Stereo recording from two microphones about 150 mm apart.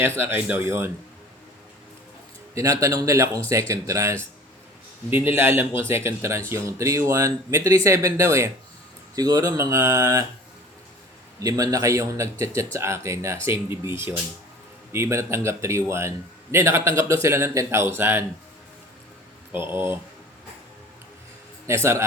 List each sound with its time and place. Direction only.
0.0 s a man's voice: 15° right (ahead or behind)
2.6 s a man's voice: 20° right (ahead or behind)
11.3 s a man's voice: 25° right (ahead or behind)
19.7 s a man's voice: 15° right (ahead or behind)
21.7 s a man's voice: 20° right (ahead or behind)